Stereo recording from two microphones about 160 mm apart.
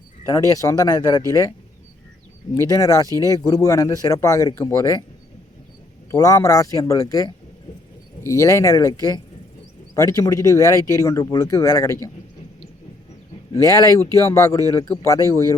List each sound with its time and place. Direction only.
0.3 s speech: 20° left (ahead or behind)
2.6 s speech: 20° left (ahead or behind)
6.1 s speech: 20° left (ahead or behind)
13.7 s speech: 20° left (ahead or behind)